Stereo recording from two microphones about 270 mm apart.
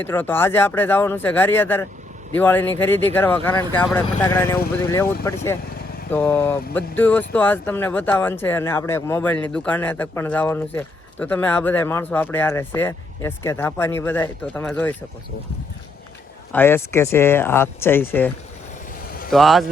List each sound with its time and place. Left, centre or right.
0.0 s speech: centre
16.5 s speech: centre
19.0 s vehicle: left
19.3 s speech: centre